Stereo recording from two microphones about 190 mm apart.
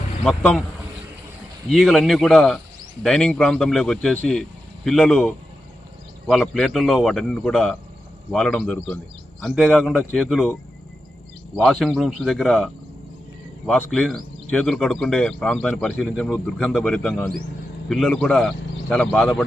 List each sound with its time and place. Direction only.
0.3 s a man's voice: 5° left (ahead or behind)
1.7 s a man's voice: centre (ahead or behind)